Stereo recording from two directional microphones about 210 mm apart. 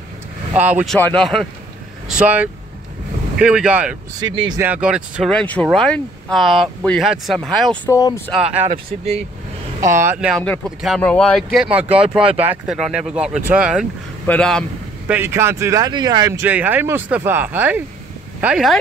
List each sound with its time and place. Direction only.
0.5 s speech: 10° right (ahead or behind)
0.9 s speech: 5° left (ahead or behind)
4.2 s speech: 20° right (ahead or behind)
4.6 s speech: 5° right (ahead or behind); by 8.2 s 15° left (ahead or behind)
8.3 s speech: centre (ahead or behind)
8.6 s speech: 30° right (ahead or behind)
9.8 s speech: 15° right (ahead or behind)
14.2 s speech: 5° left (ahead or behind)
15.0 s speech: 10° right (ahead or behind)